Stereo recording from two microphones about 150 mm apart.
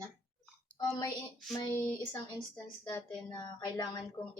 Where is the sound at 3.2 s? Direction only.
30° left (ahead or behind).